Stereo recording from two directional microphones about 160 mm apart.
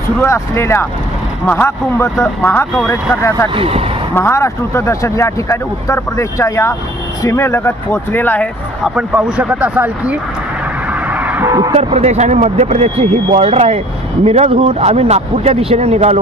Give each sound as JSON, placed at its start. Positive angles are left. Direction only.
{"t": 0.2, "sound": "speech", "side_deg": 15}
{"t": 3.5, "sound": "speech", "side_deg": -35}
{"t": 4.1, "sound": "speech", "side_deg": 15}
{"t": 8.8, "sound": "speech", "side_deg": -5}
{"t": 11.1, "sound": "a sound", "side_deg": -10}
{"t": 11.4, "sound": "speech", "side_deg": -20}
{"t": 11.7, "sound": "speech", "side_deg": -40}